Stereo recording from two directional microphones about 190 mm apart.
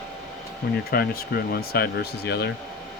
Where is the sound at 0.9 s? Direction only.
55° left (ahead or behind).